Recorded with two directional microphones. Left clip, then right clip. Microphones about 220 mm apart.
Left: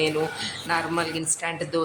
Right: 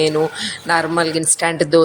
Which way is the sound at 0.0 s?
25° right (ahead or behind).